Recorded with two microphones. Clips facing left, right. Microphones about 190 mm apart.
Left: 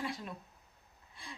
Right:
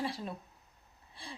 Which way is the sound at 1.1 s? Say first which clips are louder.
Right 3 dB; 30° right (ahead or behind).